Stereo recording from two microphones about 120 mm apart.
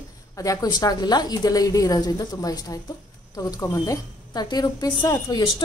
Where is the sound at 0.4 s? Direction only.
30° left (ahead or behind).